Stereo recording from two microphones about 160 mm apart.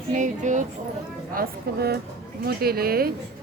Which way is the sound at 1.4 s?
80° right.